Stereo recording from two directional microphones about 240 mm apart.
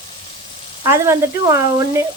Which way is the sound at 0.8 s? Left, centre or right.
Centre.